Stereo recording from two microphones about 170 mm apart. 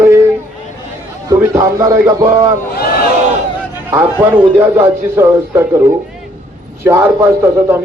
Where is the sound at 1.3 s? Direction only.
15° right (ahead or behind).